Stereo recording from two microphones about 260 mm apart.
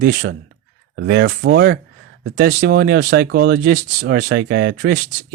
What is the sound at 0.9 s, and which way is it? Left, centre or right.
Speech, right.